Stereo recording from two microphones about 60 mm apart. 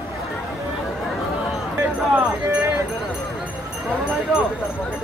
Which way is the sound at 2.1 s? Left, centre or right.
Right.